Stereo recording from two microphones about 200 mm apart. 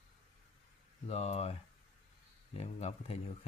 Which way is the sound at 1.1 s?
30° left (ahead or behind).